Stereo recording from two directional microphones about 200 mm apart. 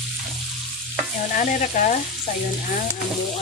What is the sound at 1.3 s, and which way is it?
Frying, 40° left (ahead or behind).